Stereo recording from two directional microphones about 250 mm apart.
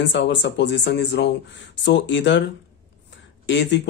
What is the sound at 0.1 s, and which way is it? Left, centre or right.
Speech, left.